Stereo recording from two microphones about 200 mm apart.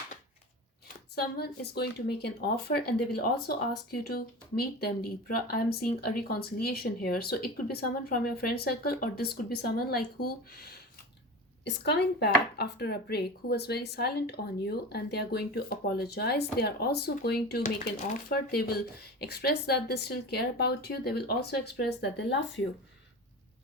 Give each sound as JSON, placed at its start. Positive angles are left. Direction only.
{"t": 1.1, "sound": "a woman's voice", "side_deg": 55}